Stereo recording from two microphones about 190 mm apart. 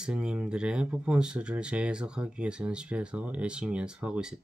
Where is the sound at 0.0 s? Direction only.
5° right (ahead or behind).